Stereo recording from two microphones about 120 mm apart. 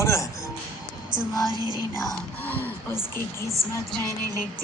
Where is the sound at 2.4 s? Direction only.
15° left (ahead or behind).